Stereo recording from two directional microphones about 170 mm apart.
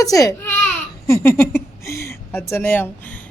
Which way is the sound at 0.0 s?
20° left (ahead or behind).